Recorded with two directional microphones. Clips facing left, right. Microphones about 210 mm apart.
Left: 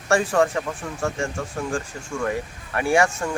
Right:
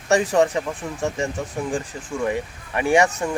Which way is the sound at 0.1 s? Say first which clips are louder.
Right 2 dB; 20° right (ahead or behind).